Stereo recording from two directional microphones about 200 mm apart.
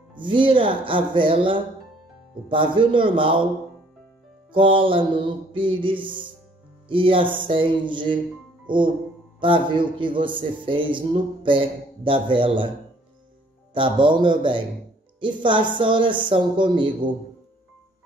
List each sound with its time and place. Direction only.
0.1 s a man's voice: 25° right (ahead or behind)
4.5 s a man's voice: 25° right (ahead or behind)
13.7 s a man's voice: 25° right (ahead or behind)